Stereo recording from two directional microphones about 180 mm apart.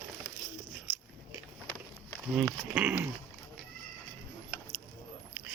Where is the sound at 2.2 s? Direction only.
5° right (ahead or behind).